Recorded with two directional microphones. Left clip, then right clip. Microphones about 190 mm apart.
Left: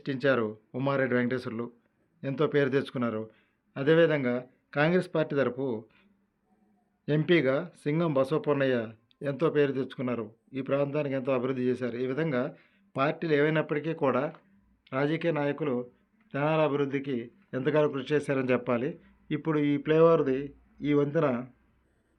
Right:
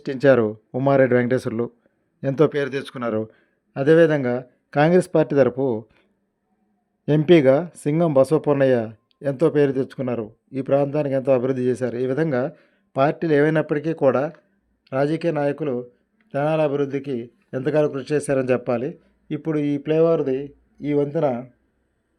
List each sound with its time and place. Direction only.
0.0 s a man's voice: 45° right (ahead or behind); by 21.4 s 25° right (ahead or behind)